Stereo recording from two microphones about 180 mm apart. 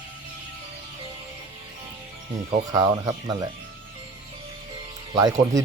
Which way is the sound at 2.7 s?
20° right (ahead or behind).